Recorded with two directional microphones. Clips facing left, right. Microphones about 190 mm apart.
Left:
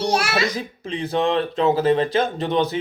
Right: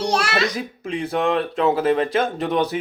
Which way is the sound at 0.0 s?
5° left (ahead or behind).